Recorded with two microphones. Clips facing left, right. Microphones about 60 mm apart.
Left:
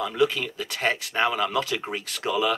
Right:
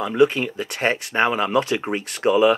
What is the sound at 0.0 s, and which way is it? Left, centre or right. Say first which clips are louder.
Speech: right 6 dB; right.